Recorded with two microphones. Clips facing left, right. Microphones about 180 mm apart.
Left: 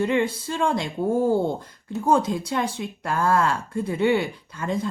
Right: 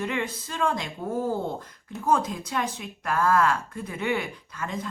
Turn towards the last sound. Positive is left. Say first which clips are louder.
# left 6 dB
turn(degrees=30)  # may be behind; listen again after turning